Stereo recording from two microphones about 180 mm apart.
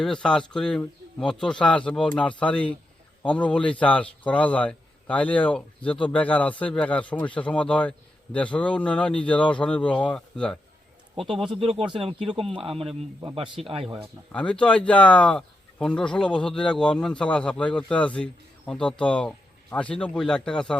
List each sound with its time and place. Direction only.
0.0 s a man's voice: 5° left (ahead or behind)
11.6 s speech: 30° right (ahead or behind)
12.2 s speech: centre (ahead or behind)
14.3 s speech: 5° left (ahead or behind)